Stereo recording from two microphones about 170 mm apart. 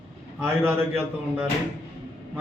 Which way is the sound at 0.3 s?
15° right (ahead or behind).